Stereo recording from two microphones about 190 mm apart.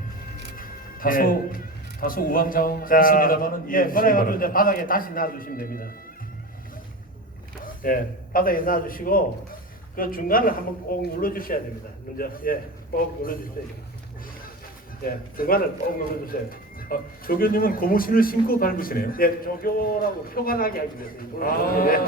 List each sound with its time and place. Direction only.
0.5 s speech: 50° left (ahead or behind)
7.6 s speech: 50° left (ahead or behind)
15.0 s speech: 50° left (ahead or behind)